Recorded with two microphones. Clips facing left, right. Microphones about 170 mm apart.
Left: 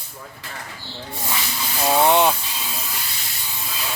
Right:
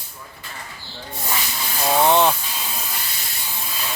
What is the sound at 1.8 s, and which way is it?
Speech, 15° left (ahead or behind).